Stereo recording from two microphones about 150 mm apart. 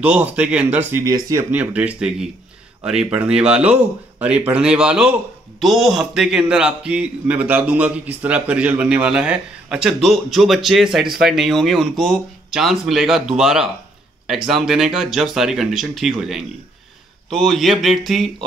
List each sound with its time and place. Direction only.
0.0 s speech: 10° right (ahead or behind)
1.0 s speech: 20° right (ahead or behind)
1.5 s a man's voice: 10° right (ahead or behind)